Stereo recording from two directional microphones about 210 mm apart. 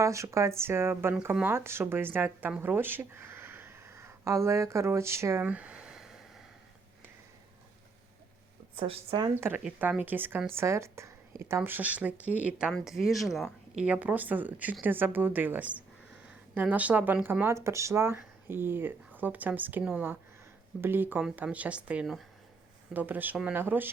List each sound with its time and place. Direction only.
0.0 s speech: 15° right (ahead or behind)
8.7 s speech: 25° right (ahead or behind)
9.3 s speech: 10° right (ahead or behind)